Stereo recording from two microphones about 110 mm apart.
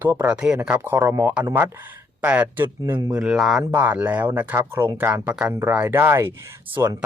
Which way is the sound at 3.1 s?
5° right (ahead or behind).